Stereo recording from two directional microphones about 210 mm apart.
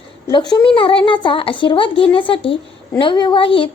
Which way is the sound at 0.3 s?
20° left (ahead or behind).